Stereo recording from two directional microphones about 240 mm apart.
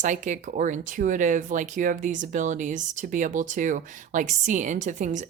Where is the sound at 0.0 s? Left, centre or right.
Right.